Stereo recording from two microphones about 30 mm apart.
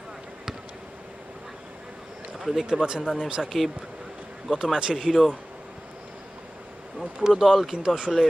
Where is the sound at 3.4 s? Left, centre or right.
Centre.